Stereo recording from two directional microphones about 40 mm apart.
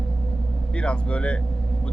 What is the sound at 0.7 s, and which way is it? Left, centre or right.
Speech, left.